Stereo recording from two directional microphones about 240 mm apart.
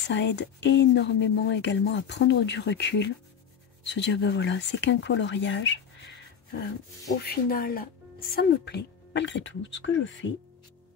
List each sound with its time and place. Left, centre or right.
0.0 s speech: left